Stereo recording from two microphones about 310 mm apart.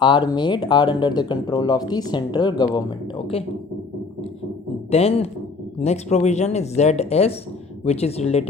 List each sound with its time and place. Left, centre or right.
0.0 s speech: centre
4.9 s speech: centre